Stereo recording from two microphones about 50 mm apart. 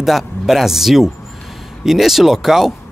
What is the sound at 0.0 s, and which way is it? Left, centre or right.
Speech, centre.